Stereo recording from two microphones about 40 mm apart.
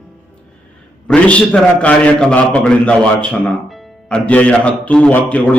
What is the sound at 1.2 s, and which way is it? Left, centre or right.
A man's voice, left.